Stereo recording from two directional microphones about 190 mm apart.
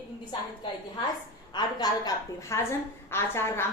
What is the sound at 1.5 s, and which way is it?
A woman's voice, 20° left (ahead or behind).